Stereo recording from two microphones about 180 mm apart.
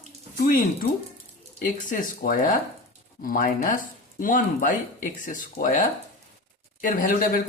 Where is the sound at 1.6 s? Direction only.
50° left (ahead or behind).